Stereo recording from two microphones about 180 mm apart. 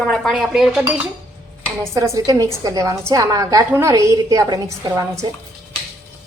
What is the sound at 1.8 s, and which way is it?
A woman's voice, 15° right (ahead or behind).